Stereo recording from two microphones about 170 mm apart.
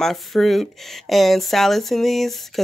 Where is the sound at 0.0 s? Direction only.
Centre (ahead or behind).